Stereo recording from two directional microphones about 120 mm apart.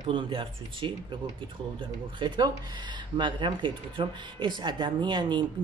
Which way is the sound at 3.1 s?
40° right (ahead or behind).